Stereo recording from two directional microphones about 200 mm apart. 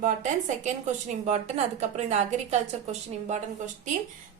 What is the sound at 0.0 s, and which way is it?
A woman's voice, 35° right (ahead or behind).